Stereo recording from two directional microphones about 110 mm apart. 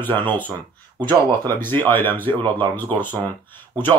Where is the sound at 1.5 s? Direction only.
20° left (ahead or behind).